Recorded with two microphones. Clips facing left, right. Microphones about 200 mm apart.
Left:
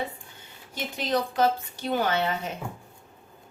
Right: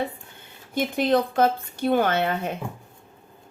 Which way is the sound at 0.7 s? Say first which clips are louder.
Right 7 dB; 55° right (ahead or behind).